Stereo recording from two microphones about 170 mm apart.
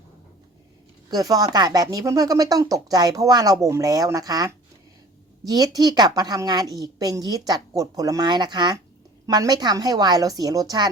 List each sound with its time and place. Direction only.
1.1 s speech: 20° right (ahead or behind)